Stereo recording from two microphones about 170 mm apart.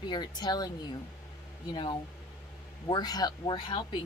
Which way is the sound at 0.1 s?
25° left (ahead or behind).